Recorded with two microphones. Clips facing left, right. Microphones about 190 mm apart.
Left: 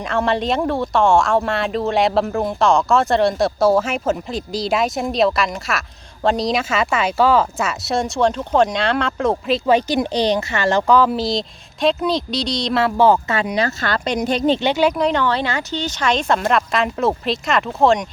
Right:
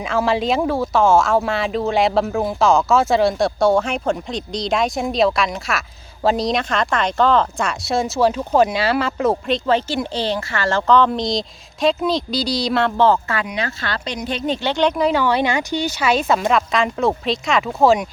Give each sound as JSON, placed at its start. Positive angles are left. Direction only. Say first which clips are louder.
{"t": 0.0, "sound": "speech", "louder": "right 1 dB", "side_deg": 0}
{"t": 9.6, "sound": "speech", "louder": "left 4 dB", "side_deg": 15}
{"t": 13.3, "sound": "speech", "louder": "left 4 dB", "side_deg": 35}
{"t": 14.6, "sound": "speech", "louder": "left 1 dB", "side_deg": 10}